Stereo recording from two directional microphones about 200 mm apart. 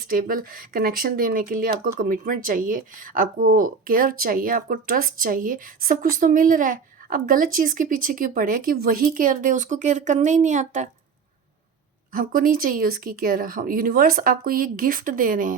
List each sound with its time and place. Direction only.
0.0 s speech: 45° right (ahead or behind)
12.1 s speech: 45° right (ahead or behind)